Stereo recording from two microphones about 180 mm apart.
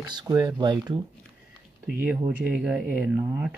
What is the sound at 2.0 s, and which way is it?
Speech, 5° right (ahead or behind).